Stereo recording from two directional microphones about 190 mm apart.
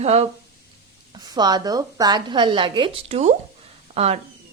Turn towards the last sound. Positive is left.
turn(degrees=-30)  # may be behind; listen again after turning